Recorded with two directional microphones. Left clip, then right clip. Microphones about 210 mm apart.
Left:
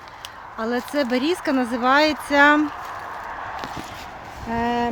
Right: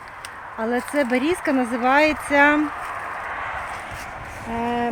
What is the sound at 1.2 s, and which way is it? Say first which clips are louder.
Speech: right 1 dB; 10° left (ahead or behind).